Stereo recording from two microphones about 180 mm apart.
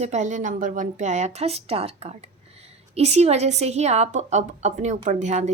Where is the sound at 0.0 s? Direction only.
40° right (ahead or behind).